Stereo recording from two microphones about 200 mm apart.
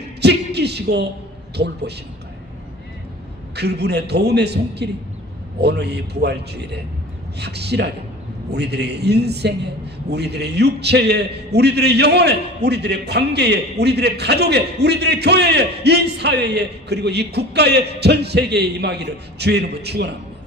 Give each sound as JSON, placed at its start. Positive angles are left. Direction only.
{"t": 0.2, "sound": "music", "side_deg": -55}
{"t": 1.6, "sound": "a man's voice", "side_deg": -55}
{"t": 3.5, "sound": "a man's voice", "side_deg": -55}